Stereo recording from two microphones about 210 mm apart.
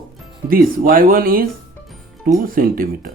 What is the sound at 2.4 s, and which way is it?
Speech, 45° right (ahead or behind).